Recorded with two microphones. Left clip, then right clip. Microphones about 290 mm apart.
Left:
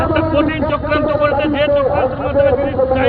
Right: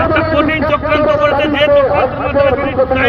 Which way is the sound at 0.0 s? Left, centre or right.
Right.